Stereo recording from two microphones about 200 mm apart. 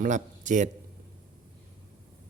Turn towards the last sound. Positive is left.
turn(degrees=-40)  # may be behind; listen again after turning